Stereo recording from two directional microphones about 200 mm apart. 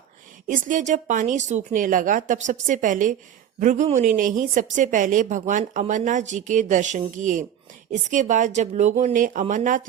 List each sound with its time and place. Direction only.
0.4 s a woman's voice: 40° right (ahead or behind)